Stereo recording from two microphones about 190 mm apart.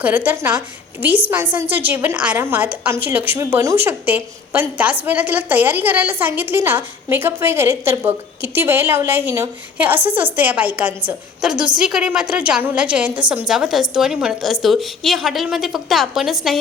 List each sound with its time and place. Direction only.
0.0 s a woman's voice: 10° right (ahead or behind)
11.5 s a woman's voice: 25° right (ahead or behind)
11.8 s a woman's voice: 5° right (ahead or behind)